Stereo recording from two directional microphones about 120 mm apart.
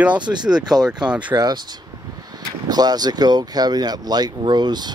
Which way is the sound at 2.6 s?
35° right (ahead or behind).